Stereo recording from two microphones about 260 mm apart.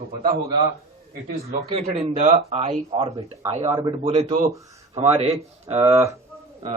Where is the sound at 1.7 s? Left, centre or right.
Right.